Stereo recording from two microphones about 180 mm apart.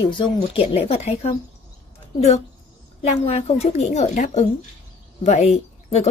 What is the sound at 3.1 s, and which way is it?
Speech, 35° left (ahead or behind).